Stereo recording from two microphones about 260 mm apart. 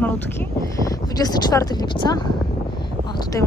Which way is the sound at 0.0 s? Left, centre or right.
Centre.